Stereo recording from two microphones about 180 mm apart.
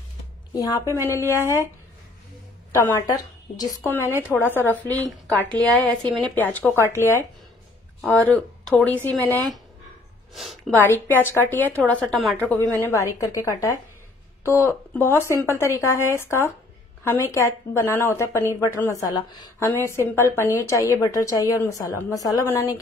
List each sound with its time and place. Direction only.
0.8 s speech: 15° right (ahead or behind)
2.7 s a woman's voice: 20° left (ahead or behind)
5.0 s speech: 15° right (ahead or behind)
5.8 s a woman's voice: 5° left (ahead or behind)
10.3 s speech: centre (ahead or behind)
10.7 s a woman's voice: 10° left (ahead or behind)